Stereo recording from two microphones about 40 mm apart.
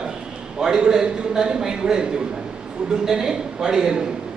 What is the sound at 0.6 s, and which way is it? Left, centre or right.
A man's voice, centre.